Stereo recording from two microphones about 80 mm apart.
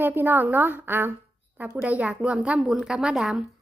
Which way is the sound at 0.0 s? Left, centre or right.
Right.